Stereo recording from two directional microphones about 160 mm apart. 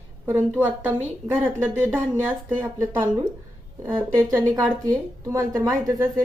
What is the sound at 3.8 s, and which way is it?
Speech, 15° right (ahead or behind).